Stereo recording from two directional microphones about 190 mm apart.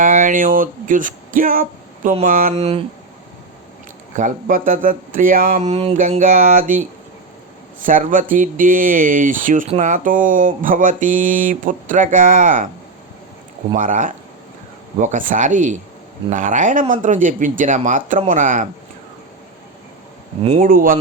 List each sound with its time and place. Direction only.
0.0 s speech: 40° right (ahead or behind)
2.5 s speech: 35° right (ahead or behind)
4.1 s speech: 40° right (ahead or behind)
7.9 s speech: 45° right (ahead or behind)
13.7 s speech: 45° right (ahead or behind)
20.6 s speech: 50° right (ahead or behind)